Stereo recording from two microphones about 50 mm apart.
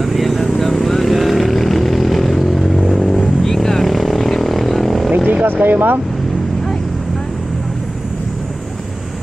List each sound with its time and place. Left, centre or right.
0.0 s vehicle: centre
5.3 s speech: right